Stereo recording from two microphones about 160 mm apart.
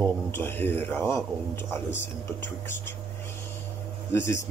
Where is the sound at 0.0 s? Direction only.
15° left (ahead or behind).